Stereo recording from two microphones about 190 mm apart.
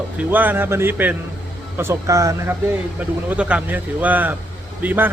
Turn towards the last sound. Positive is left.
turn(degrees=-10)  # may be behind; listen again after turning